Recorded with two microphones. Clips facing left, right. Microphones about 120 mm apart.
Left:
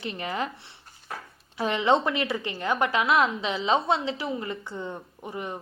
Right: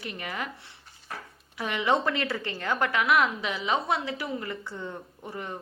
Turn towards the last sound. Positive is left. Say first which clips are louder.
# left 3 dB
turn(degrees=15)  # may be behind; listen again after turning